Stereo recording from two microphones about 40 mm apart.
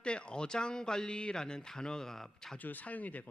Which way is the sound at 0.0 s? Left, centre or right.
Left.